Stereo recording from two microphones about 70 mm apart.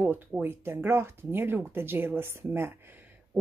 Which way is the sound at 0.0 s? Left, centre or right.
Right.